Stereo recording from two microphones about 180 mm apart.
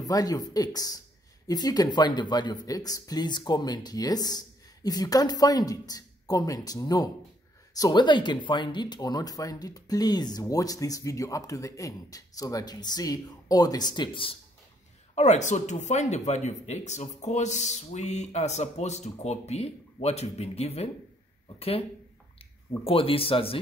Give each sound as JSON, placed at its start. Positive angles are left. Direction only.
{"t": 0.0, "sound": "speech", "side_deg": 20}
{"t": 15.1, "sound": "speech", "side_deg": 40}
{"t": 22.8, "sound": "speech", "side_deg": 30}